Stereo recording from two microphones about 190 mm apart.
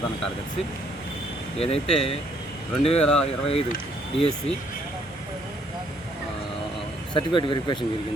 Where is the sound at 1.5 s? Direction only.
30° left (ahead or behind).